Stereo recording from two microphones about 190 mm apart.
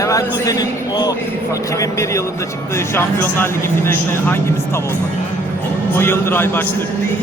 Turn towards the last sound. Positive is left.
turn(degrees=10)  # may be behind; listen again after turning